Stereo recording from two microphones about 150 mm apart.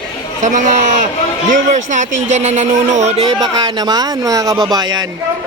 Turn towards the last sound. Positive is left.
turn(degrees=-25)  # may be behind; listen again after turning